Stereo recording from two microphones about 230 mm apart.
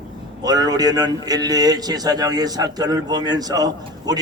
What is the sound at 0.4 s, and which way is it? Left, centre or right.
A man's voice, centre.